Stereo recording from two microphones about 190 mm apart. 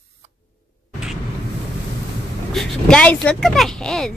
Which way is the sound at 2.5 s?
5° left (ahead or behind).